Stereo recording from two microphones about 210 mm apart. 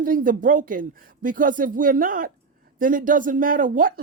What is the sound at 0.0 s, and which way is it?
Speech, 40° right (ahead or behind).